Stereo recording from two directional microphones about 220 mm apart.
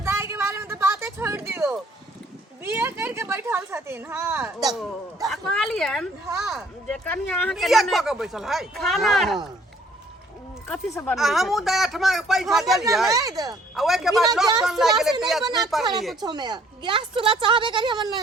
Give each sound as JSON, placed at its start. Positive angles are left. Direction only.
{"t": 0.0, "sound": "a sound", "side_deg": -10}
{"t": 2.6, "sound": "speech", "side_deg": -10}
{"t": 6.2, "sound": "speech", "side_deg": -15}
{"t": 6.6, "sound": "speech", "side_deg": 5}
{"t": 11.1, "sound": "speech", "side_deg": 0}
{"t": 13.1, "sound": "speech", "side_deg": -15}
{"t": 13.7, "sound": "speech", "side_deg": 0}
{"t": 14.4, "sound": "speech", "side_deg": -15}
{"t": 14.7, "sound": "speech", "side_deg": 0}
{"t": 15.4, "sound": "a woman's voice", "side_deg": -15}